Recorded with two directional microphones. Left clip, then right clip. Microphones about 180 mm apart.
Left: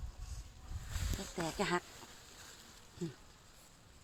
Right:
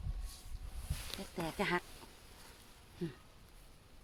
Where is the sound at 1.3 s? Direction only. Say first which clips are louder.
Even; 5° left (ahead or behind).